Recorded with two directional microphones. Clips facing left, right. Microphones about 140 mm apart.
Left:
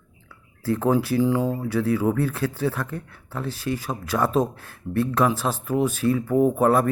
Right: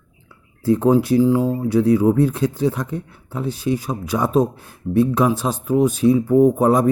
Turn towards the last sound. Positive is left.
turn(degrees=-15)  # may be behind; listen again after turning